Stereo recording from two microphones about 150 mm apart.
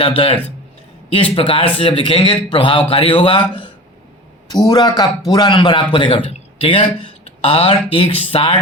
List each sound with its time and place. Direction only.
0.0 s a man's voice: 40° left (ahead or behind)